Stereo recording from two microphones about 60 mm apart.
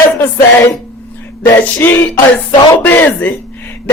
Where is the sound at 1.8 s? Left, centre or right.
Left.